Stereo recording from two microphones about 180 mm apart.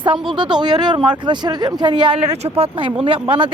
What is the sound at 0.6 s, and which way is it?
Speech, 25° right (ahead or behind).